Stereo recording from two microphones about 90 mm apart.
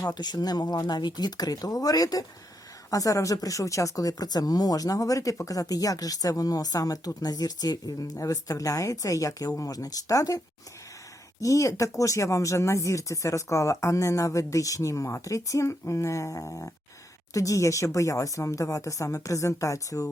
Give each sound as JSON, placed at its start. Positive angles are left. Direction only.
{"t": 0.0, "sound": "speech", "side_deg": 50}